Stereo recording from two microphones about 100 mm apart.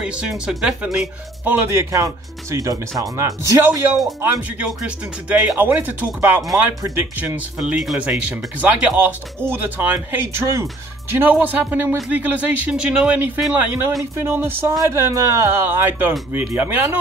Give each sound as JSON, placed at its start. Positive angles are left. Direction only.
{"t": 0.0, "sound": "speech", "side_deg": -5}
{"t": 1.7, "sound": "speech", "side_deg": -30}
{"t": 4.2, "sound": "speech", "side_deg": -15}